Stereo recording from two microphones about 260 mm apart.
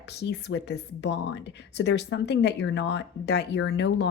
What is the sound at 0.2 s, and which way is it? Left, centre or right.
Speech, left.